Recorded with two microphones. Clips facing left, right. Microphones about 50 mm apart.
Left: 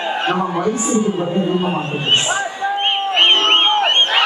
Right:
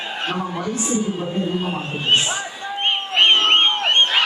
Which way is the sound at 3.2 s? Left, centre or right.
Centre.